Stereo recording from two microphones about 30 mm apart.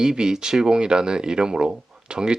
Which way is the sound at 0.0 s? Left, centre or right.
Right.